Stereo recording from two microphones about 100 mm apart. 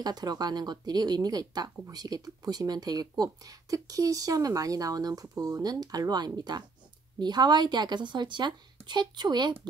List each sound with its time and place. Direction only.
0.0 s a woman's voice: 40° right (ahead or behind)